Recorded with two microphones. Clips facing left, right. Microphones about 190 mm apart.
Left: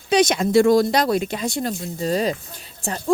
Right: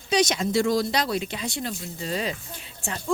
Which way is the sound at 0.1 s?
55° left (ahead or behind).